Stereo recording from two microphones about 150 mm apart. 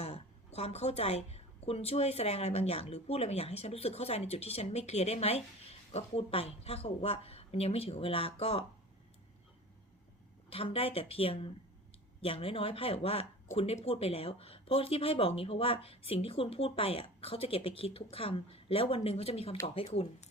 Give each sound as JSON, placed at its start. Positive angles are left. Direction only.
{"t": 0.0, "sound": "a woman's voice", "side_deg": 45}
{"t": 10.5, "sound": "speech", "side_deg": 40}